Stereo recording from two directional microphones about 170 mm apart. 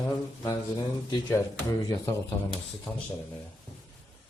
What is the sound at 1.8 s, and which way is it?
Speech, 20° left (ahead or behind).